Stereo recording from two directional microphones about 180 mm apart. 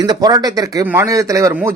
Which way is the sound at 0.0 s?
20° right (ahead or behind).